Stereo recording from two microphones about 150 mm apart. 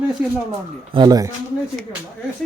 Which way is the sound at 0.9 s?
30° right (ahead or behind).